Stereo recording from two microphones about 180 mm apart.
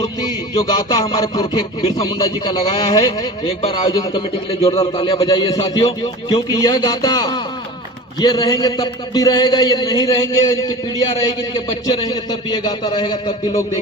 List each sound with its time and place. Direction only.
0.0 s a man's voice: 20° left (ahead or behind)